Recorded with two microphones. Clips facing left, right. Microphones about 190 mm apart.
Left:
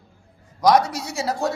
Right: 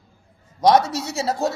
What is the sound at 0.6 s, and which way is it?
Speech, 25° right (ahead or behind).